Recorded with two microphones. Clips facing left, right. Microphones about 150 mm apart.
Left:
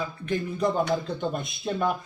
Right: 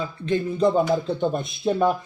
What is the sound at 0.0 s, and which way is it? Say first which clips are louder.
Speech: right 5 dB; 25° right (ahead or behind).